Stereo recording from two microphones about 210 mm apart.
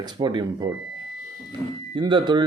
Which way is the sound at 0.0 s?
20° right (ahead or behind).